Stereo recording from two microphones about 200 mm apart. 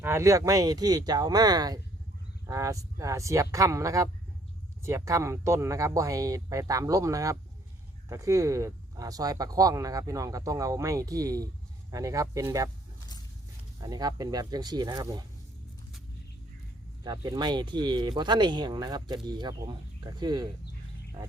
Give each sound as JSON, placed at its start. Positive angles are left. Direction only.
{"t": 0.0, "sound": "speech", "side_deg": -15}
{"t": 13.7, "sound": "speech", "side_deg": -20}
{"t": 17.0, "sound": "speech", "side_deg": -20}